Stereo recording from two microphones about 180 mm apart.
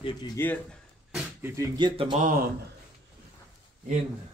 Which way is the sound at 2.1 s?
50° right (ahead or behind).